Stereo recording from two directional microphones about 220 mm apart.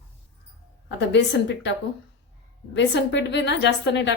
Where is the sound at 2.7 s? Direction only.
50° left (ahead or behind).